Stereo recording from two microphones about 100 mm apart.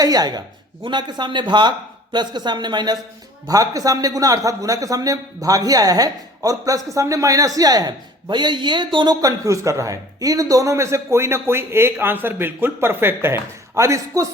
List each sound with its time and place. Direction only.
0.0 s a man's voice: 40° right (ahead or behind)
9.2 s a man's voice: 35° right (ahead or behind)